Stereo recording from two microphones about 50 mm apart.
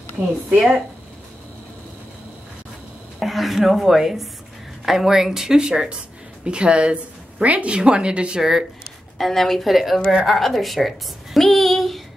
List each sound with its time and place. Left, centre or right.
3.2 s a woman's voice: centre; by 8.4 s right
8.4 s speech: centre
9.2 s a woman's voice: centre